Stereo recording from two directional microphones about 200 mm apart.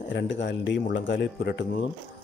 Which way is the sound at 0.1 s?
65° left (ahead or behind).